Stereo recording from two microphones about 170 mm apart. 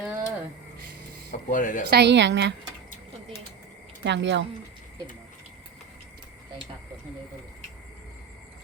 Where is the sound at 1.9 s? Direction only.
85° right.